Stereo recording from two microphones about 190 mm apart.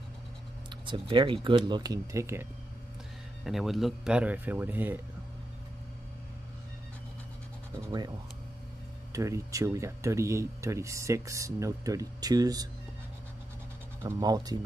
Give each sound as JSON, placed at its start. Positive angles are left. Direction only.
{"t": 0.7, "sound": "speech", "side_deg": -25}
{"t": 3.4, "sound": "speech", "side_deg": 0}
{"t": 9.1, "sound": "speech", "side_deg": -15}
{"t": 14.0, "sound": "speech", "side_deg": -20}